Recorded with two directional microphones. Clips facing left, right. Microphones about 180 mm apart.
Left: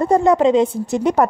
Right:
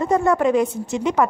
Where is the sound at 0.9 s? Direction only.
40° left (ahead or behind).